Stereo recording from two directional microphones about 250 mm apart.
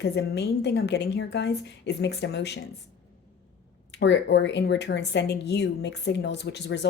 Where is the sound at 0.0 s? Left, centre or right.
Left.